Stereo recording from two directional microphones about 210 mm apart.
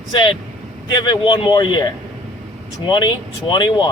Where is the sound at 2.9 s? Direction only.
20° left (ahead or behind).